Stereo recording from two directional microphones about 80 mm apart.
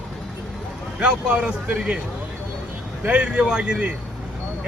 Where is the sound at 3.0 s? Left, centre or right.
Centre.